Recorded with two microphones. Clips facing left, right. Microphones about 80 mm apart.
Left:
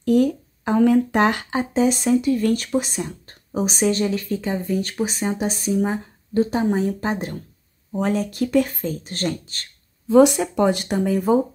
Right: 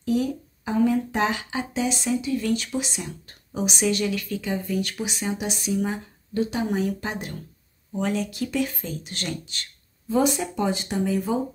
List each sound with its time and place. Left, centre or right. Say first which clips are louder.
0.0 s speech: left 7 dB; left
10.0 s speech: left 8 dB; left